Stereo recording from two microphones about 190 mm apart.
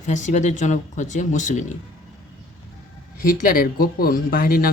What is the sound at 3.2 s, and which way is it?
Speech, 50° left (ahead or behind).